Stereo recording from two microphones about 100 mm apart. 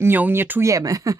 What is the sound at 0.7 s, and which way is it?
Speech, 35° right (ahead or behind).